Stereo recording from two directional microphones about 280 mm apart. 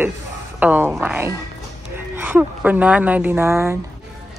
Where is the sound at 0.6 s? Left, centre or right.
Centre.